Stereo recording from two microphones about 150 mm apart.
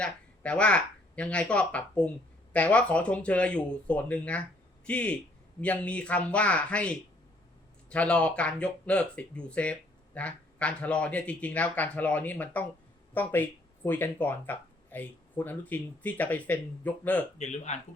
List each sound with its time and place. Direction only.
0.0 s speech: 5° left (ahead or behind)
17.3 s speech: 50° left (ahead or behind)